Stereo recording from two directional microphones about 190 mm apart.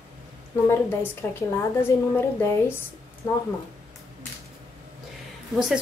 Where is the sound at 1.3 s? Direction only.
10° left (ahead or behind).